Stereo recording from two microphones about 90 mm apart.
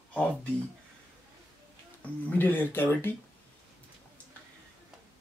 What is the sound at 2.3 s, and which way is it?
Speech, 20° left (ahead or behind).